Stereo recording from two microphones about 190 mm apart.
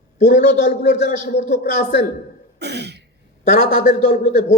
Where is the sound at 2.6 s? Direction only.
60° right (ahead or behind).